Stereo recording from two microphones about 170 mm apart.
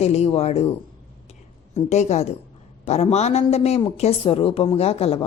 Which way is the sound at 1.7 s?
40° left (ahead or behind).